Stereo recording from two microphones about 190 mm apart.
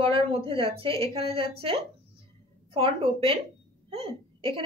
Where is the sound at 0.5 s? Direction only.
30° right (ahead or behind).